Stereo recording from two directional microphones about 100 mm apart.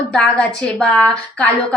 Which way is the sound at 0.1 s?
5° left (ahead or behind).